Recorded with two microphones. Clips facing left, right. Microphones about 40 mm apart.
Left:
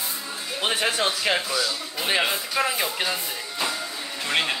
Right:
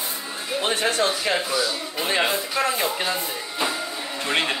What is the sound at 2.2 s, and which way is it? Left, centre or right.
Speech, centre.